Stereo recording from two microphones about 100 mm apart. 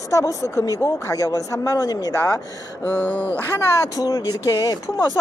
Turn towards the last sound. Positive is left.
turn(degrees=35)  # may be behind; listen again after turning